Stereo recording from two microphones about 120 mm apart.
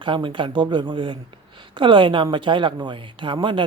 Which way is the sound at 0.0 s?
45° right (ahead or behind).